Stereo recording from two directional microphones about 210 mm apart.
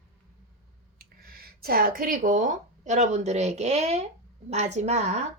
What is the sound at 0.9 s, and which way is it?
A woman's voice, 45° right (ahead or behind).